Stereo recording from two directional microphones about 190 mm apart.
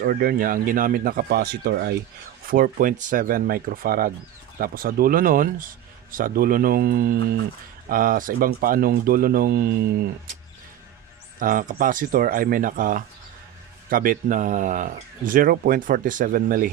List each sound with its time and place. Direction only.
0.0 s speech: 50° right (ahead or behind)
2.5 s speech: 45° right (ahead or behind)
11.3 s speech: 45° right (ahead or behind)